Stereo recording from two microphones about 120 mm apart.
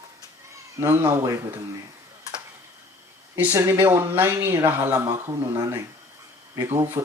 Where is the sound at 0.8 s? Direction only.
20° right (ahead or behind).